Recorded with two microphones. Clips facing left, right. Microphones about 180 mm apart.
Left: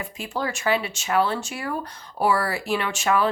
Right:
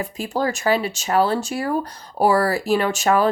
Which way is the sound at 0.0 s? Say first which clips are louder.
Right 6 dB; 40° right (ahead or behind).